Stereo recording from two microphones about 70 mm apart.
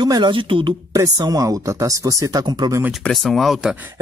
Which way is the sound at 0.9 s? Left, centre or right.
Right.